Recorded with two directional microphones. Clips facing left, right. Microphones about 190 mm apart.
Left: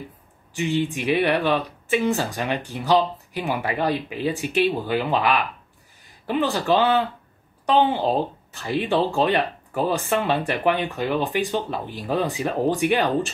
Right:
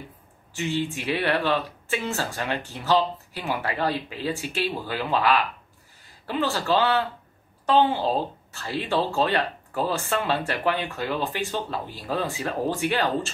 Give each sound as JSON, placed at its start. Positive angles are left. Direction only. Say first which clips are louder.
{"t": 0.6, "sound": "speech", "louder": "left 4 dB", "side_deg": 15}